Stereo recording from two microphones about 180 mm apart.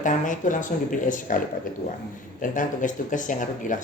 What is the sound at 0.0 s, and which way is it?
A woman's voice, 45° left (ahead or behind).